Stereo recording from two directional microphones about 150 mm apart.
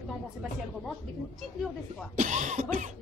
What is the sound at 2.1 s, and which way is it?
Speech, 55° right (ahead or behind).